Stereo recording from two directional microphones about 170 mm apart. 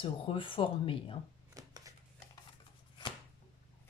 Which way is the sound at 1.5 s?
20° right (ahead or behind).